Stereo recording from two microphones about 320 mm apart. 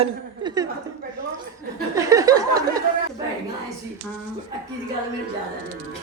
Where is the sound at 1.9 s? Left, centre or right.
Centre.